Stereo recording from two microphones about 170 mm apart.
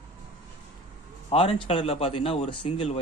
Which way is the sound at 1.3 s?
35° left (ahead or behind).